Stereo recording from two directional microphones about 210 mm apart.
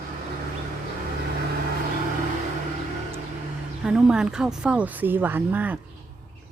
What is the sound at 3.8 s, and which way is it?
A woman's voice, 5° right (ahead or behind).